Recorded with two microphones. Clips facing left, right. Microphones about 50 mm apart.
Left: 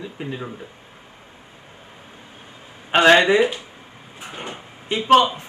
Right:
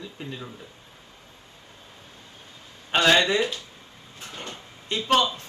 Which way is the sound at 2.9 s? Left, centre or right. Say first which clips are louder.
Left 6 dB; left.